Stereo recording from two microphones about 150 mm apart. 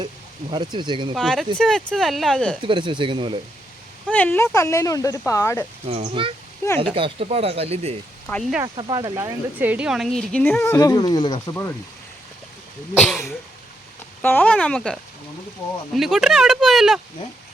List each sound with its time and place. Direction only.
0.5 s speech: 30° right (ahead or behind)
1.1 s speech: centre (ahead or behind)
2.6 s speech: 35° right (ahead or behind)
4.1 s speech: 10° left (ahead or behind)
5.9 s speech: 40° right (ahead or behind)
8.3 s speech: 5° left (ahead or behind)
8.6 s speech: 30° right (ahead or behind)
9.6 s speech: 10° right (ahead or behind)
10.6 s speech: 20° left (ahead or behind)
13.1 s speech: centre (ahead or behind)
14.2 s speech: 10° left (ahead or behind)